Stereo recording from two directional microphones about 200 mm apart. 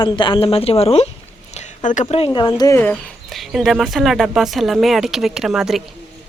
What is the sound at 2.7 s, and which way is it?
Speech, 5° left (ahead or behind).